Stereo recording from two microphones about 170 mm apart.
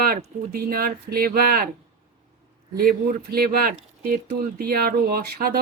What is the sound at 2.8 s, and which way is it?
Speech, 60° right (ahead or behind).